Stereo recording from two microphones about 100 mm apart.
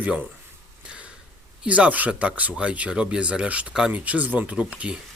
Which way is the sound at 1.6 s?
15° right (ahead or behind).